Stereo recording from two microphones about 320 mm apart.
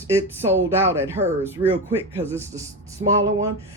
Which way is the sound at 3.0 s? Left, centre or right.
Centre.